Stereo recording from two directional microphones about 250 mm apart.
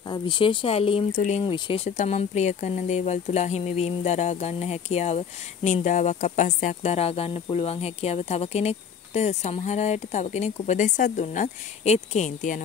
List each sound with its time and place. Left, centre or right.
0.1 s speech: centre